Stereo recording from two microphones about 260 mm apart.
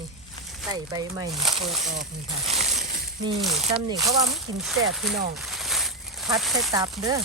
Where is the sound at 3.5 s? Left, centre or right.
Right.